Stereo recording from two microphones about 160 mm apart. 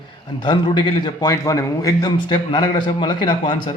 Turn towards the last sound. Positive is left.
turn(degrees=35)  # may be behind; listen again after turning